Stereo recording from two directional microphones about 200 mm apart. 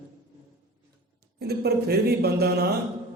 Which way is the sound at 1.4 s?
55° right (ahead or behind).